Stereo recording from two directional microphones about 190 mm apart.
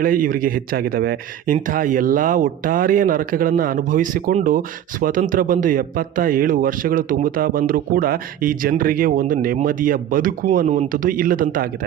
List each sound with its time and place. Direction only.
0.0 s speech: 45° right (ahead or behind)